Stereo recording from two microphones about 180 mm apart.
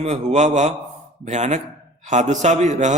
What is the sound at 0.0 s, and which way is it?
A man's voice, 40° right (ahead or behind).